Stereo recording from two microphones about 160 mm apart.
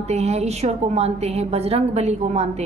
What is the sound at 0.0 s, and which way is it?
A woman's voice, 45° right (ahead or behind).